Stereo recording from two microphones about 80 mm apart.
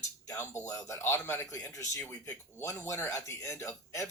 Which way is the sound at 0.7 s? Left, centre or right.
Left.